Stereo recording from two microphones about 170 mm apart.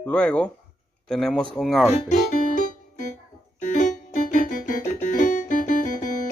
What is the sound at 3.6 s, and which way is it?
Keyboard, 45° left (ahead or behind).